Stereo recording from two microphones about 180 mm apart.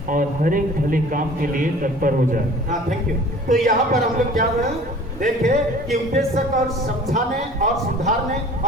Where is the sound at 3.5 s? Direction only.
50° right (ahead or behind).